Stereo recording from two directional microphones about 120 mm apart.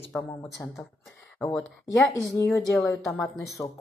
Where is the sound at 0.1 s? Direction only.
10° left (ahead or behind).